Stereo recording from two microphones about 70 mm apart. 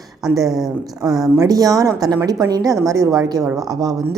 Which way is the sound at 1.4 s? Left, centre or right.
Right.